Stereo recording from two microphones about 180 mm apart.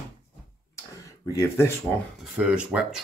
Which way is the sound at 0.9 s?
15° left (ahead or behind).